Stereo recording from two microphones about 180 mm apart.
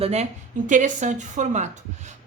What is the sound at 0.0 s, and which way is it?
Speech, 35° right (ahead or behind).